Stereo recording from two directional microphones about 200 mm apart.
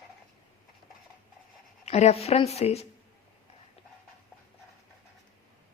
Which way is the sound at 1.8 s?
30° left (ahead or behind).